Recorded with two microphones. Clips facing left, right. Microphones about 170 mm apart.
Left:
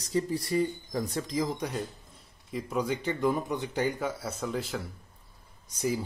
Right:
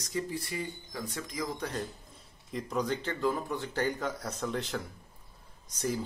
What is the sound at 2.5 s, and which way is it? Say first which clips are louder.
Speech: left 2 dB; 5° left (ahead or behind).